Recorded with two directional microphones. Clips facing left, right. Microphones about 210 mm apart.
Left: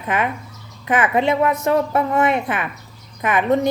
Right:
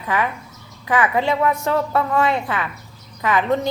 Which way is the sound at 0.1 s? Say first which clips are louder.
Even; 20° left (ahead or behind).